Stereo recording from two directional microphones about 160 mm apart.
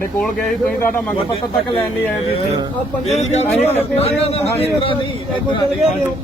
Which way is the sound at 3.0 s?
45° left (ahead or behind).